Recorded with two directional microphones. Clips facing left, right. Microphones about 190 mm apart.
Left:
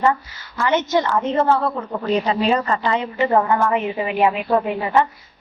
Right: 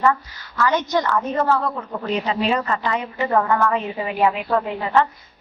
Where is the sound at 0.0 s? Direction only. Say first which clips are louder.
Left 1 dB; 20° left (ahead or behind).